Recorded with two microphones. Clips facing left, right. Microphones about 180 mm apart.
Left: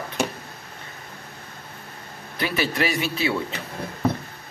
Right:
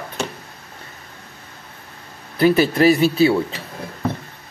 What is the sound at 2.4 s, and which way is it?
Speech, 40° right (ahead or behind).